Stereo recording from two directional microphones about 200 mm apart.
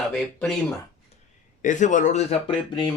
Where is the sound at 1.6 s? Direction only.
40° left (ahead or behind).